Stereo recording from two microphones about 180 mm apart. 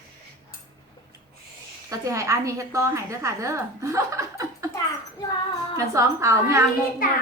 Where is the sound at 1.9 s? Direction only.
15° right (ahead or behind).